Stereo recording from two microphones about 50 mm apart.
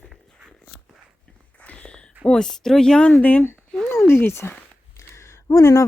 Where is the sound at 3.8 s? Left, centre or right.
Left.